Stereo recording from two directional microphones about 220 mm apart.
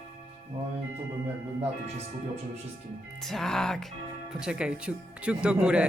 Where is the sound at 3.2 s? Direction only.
Centre (ahead or behind).